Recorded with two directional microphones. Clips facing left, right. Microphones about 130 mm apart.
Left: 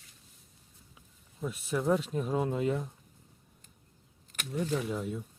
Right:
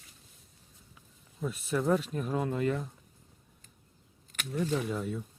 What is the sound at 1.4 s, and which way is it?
Speech, 10° left (ahead or behind).